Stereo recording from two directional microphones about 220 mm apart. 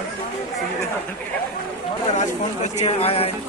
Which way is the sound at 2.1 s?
30° left (ahead or behind).